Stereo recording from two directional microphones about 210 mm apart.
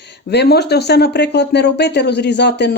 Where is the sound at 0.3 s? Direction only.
50° left (ahead or behind).